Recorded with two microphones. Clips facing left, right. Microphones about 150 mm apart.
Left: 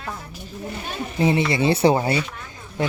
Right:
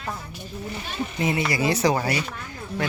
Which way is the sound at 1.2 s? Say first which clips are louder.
Left 5 dB; 25° left (ahead or behind).